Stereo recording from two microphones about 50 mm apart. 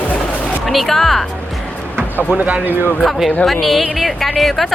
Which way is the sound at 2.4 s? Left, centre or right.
Right.